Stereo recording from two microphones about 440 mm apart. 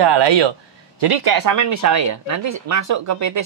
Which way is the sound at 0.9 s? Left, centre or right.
Right.